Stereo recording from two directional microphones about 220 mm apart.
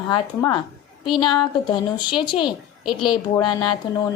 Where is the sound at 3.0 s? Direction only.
20° left (ahead or behind).